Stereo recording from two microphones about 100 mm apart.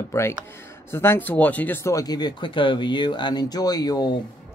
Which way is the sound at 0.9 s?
25° left (ahead or behind).